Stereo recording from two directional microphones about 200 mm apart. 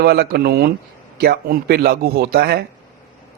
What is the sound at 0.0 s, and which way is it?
A man's voice, 50° right (ahead or behind).